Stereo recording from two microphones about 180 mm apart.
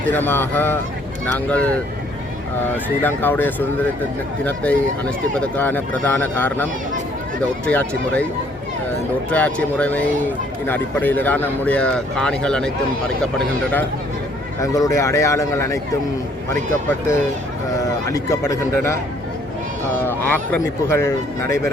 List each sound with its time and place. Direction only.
0.1 s speech: 10° left (ahead or behind)
9.3 s speech: 5° left (ahead or behind)
18.1 s speech: 15° left (ahead or behind)
20.0 s speech: 10° left (ahead or behind)